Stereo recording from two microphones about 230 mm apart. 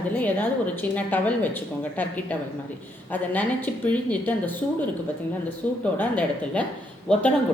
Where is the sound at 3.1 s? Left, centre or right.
Centre.